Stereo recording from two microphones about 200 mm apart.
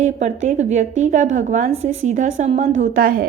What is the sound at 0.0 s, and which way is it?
A woman's voice, 35° right (ahead or behind).